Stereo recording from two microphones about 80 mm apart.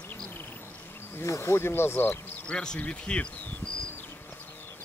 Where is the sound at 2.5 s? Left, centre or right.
Centre.